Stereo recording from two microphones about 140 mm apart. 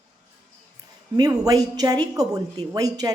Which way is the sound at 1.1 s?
25° right (ahead or behind).